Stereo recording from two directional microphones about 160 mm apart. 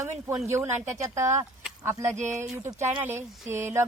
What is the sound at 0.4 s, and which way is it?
A woman's voice, 15° right (ahead or behind).